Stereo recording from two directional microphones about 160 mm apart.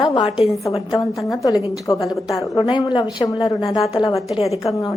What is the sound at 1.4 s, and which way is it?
A woman's voice, 20° left (ahead or behind).